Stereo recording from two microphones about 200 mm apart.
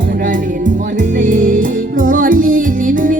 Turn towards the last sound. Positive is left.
turn(degrees=-40)  # may be behind; listen again after turning